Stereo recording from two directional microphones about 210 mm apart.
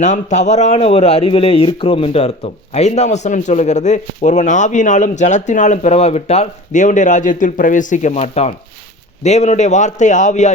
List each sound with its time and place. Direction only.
0.0 s a man's voice: 35° left (ahead or behind)